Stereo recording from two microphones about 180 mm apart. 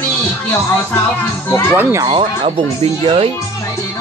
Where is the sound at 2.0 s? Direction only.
25° right (ahead or behind).